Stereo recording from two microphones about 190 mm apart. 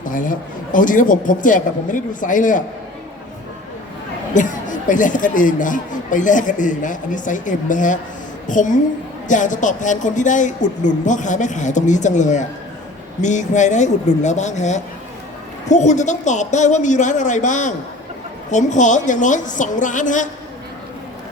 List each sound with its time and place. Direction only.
0.0 s speech: 45° left (ahead or behind)
4.4 s a woman's voice: 40° left (ahead or behind)